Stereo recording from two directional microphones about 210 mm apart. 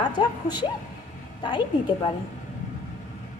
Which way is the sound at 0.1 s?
20° left (ahead or behind).